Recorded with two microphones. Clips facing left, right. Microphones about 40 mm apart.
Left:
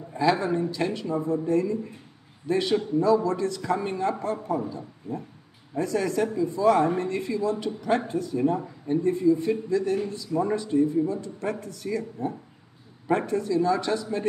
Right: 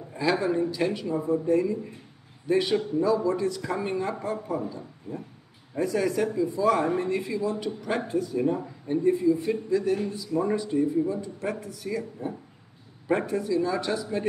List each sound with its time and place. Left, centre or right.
0.1 s speech: centre